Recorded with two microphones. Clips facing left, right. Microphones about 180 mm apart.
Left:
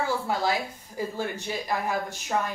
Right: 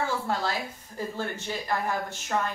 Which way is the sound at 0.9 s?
10° left (ahead or behind).